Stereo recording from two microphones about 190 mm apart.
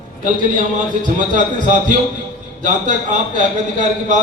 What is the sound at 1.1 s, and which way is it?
A man's voice, 40° right (ahead or behind).